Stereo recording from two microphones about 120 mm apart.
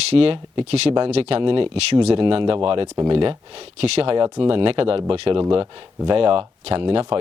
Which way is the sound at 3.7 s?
60° right (ahead or behind).